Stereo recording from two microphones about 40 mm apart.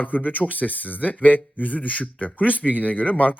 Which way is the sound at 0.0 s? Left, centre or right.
Left.